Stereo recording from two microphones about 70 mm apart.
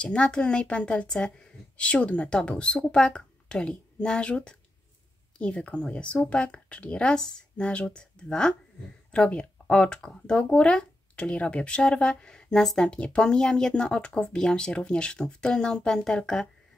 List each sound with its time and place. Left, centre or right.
0.0 s speech: centre